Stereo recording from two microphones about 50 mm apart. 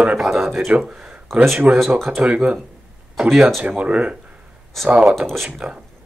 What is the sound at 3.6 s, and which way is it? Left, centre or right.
Speech, right.